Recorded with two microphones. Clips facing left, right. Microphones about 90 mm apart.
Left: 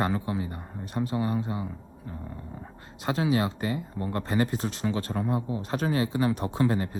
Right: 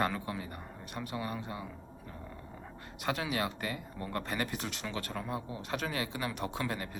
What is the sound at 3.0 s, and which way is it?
Speech, 30° left (ahead or behind).